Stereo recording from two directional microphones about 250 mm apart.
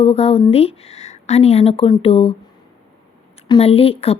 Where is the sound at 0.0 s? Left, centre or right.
Left.